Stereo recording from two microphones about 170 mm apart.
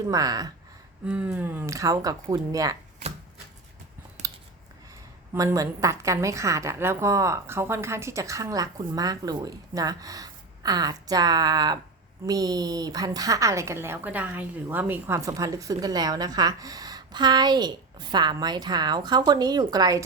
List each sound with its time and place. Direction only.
0.0 s a woman's voice: 20° right (ahead or behind)
1.0 s a woman's voice: 10° right (ahead or behind)
5.3 s a woman's voice: 15° right (ahead or behind)